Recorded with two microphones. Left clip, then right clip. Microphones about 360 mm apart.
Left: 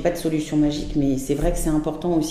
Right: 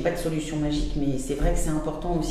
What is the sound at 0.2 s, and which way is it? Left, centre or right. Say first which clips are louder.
Speech: left 5 dB; left.